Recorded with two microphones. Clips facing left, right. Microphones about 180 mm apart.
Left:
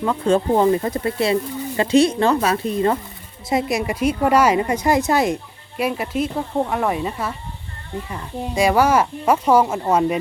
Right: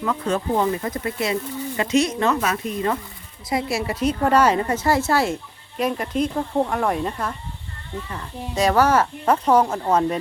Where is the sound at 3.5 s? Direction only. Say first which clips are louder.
Left 3 dB; 20° left (ahead or behind).